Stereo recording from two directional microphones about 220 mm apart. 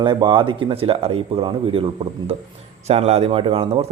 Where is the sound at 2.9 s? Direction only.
30° right (ahead or behind).